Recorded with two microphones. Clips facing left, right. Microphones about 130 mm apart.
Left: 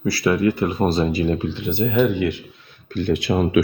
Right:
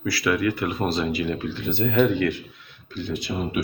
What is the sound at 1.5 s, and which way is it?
Speech, 15° left (ahead or behind).